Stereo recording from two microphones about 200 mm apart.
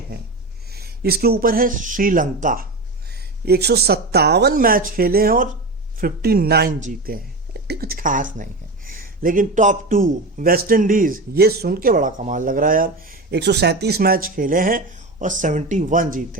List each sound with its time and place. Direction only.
0.7 s a man's voice: 50° right (ahead or behind)
3.4 s a man's voice: 55° right (ahead or behind)